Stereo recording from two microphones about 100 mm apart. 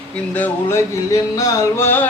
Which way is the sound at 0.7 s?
30° left (ahead or behind).